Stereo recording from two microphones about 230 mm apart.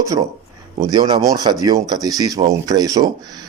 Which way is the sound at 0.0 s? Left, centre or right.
Centre.